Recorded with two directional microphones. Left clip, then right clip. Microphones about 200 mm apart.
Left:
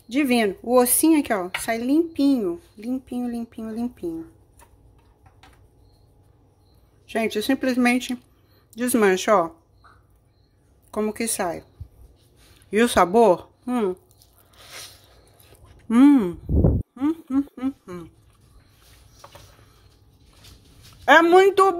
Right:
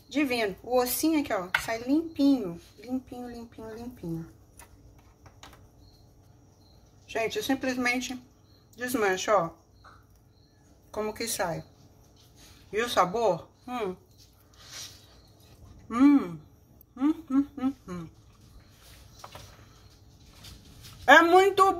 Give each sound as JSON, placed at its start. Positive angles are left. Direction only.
{"t": 0.1, "sound": "speech", "side_deg": 50}
{"t": 7.1, "sound": "speech", "side_deg": 55}
{"t": 10.9, "sound": "speech", "side_deg": 45}
{"t": 12.7, "sound": "speech", "side_deg": 55}
{"t": 14.6, "sound": "a sound", "side_deg": 50}
{"t": 15.9, "sound": "speech", "side_deg": 40}
{"t": 16.9, "sound": "a sound", "side_deg": 45}
{"t": 21.0, "sound": "speech", "side_deg": 45}